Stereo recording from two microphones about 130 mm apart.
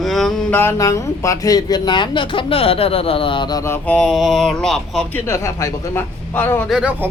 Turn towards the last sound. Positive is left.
turn(degrees=-10)  # may be behind; listen again after turning